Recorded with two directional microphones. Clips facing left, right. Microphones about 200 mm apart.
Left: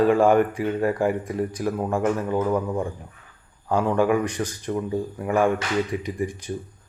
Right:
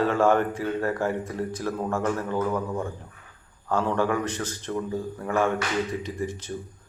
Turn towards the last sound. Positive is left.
turn(degrees=15)  # may be behind; listen again after turning